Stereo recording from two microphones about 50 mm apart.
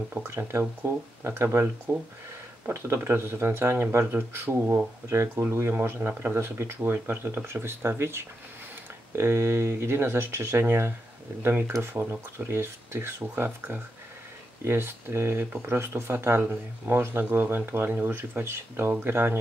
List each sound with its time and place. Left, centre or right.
0.1 s speech: right
14.6 s speech: right